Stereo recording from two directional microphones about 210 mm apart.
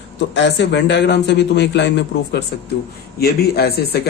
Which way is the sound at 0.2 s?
55° left (ahead or behind).